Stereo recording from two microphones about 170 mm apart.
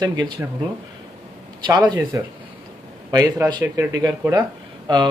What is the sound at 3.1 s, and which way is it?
Speech, 20° right (ahead or behind).